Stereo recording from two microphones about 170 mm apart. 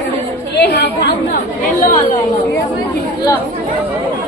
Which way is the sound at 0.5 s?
75° left (ahead or behind).